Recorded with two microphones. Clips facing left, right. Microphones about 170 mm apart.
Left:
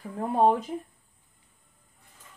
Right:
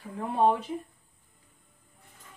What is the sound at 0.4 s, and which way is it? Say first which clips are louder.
Speech: left 2 dB; 35° left (ahead or behind).